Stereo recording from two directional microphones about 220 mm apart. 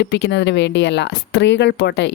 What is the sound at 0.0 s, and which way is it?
Speech, 50° left (ahead or behind).